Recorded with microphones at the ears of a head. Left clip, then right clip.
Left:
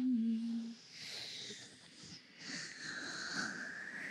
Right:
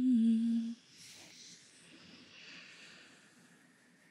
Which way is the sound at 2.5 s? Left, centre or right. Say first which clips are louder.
Left 11 dB; left.